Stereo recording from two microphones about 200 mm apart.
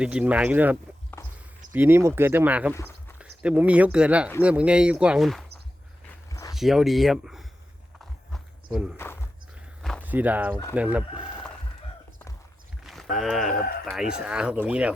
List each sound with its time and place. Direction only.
0.0 s speech: 5° right (ahead or behind)
1.2 s walk: 15° left (ahead or behind)
1.7 s speech: 10° right (ahead or behind)
6.5 s speech: centre (ahead or behind)
8.3 s a sound: 5° right (ahead or behind)
10.0 s speech: 10° right (ahead or behind)
12.8 s speech: centre (ahead or behind)